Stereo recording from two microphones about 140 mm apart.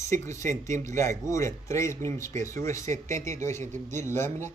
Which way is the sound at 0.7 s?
60° right (ahead or behind).